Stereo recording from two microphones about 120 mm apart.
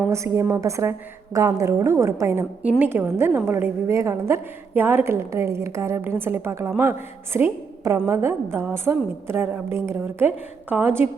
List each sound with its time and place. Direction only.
0.1 s a woman's voice: 25° right (ahead or behind)